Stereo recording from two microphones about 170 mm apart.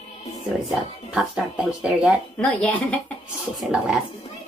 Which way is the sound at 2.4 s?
5° left (ahead or behind).